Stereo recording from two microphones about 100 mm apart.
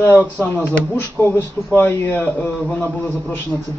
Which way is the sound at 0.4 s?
20° left (ahead or behind).